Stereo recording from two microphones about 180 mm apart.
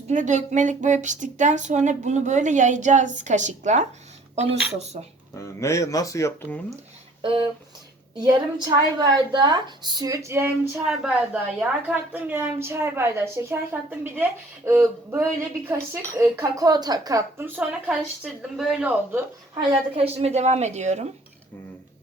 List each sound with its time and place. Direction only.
0.1 s a woman's voice: 40° right (ahead or behind)
5.4 s speech: 15° left (ahead or behind)
7.2 s a woman's voice: 30° right (ahead or behind); by 19.2 s 10° right (ahead or behind)
19.5 s a woman's voice: 35° right (ahead or behind)